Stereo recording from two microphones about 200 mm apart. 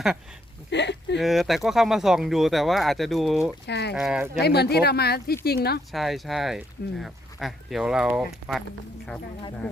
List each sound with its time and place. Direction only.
0.7 s a sound: 60° left (ahead or behind)
1.2 s speech: centre (ahead or behind)
3.7 s speech: 55° left (ahead or behind)
3.9 s speech: 5° right (ahead or behind)
4.4 s speech: 55° left (ahead or behind)
5.9 s speech: centre (ahead or behind)